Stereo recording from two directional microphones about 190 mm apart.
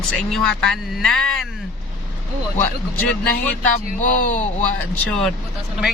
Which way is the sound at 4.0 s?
45° left (ahead or behind).